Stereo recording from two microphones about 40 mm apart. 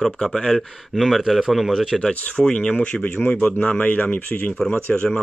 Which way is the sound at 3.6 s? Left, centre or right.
Left.